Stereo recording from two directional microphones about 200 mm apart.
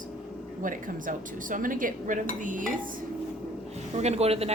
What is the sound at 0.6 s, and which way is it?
Speech, 40° right (ahead or behind).